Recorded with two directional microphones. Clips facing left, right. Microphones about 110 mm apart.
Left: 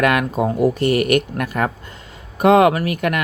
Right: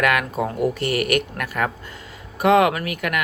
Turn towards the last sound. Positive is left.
turn(degrees=35)  # may be behind; listen again after turning